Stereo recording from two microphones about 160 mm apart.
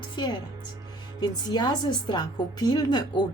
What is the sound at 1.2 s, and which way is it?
A woman's voice, 25° left (ahead or behind).